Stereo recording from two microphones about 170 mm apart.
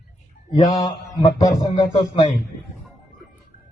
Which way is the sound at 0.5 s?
25° left (ahead or behind).